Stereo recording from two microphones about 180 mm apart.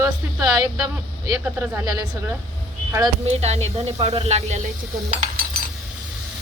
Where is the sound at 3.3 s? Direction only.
35° right (ahead or behind).